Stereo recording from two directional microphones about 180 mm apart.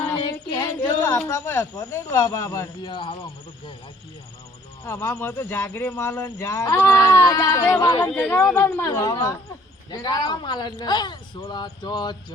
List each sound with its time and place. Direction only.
0.8 s speech: 15° left (ahead or behind)
4.9 s speech: 10° left (ahead or behind)
7.9 s speech: 10° left (ahead or behind)